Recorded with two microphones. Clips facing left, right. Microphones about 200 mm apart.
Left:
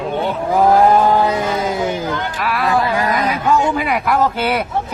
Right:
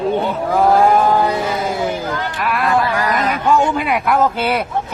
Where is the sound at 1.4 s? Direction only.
Centre (ahead or behind).